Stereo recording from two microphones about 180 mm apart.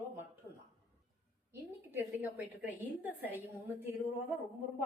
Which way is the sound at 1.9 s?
10° right (ahead or behind).